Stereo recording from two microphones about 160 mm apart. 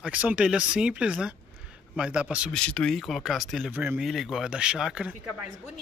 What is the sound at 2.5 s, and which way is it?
Speech, 5° left (ahead or behind).